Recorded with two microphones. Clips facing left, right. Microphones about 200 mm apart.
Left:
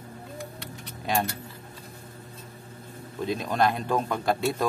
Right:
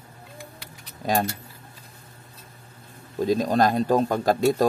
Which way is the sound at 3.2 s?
40° right (ahead or behind).